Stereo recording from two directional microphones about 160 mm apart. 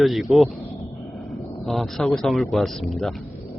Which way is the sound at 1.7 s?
Centre (ahead or behind).